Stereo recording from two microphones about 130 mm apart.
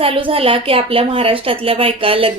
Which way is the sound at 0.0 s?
45° right (ahead or behind).